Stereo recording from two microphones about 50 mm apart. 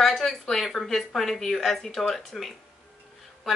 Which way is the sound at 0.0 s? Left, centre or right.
Centre.